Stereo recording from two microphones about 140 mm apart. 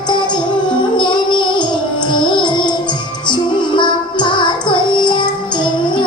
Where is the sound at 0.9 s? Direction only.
35° left (ahead or behind).